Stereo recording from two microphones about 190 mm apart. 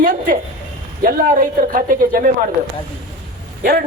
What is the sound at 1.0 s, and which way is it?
Speech, 45° right (ahead or behind).